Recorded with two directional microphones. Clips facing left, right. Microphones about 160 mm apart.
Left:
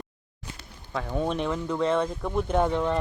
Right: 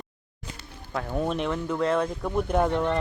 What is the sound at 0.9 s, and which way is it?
Speech, 5° right (ahead or behind).